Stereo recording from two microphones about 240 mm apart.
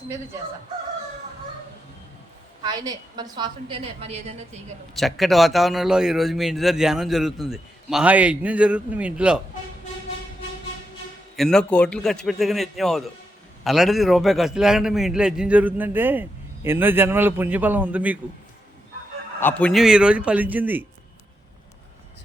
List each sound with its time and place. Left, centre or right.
2.6 s a woman's voice: centre
4.9 s a man's voice: centre
11.3 s a man's voice: centre
19.4 s a man's voice: centre